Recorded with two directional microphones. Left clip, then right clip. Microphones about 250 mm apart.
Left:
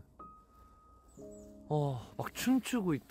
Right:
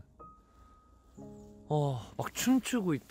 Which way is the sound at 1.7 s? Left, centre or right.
Centre.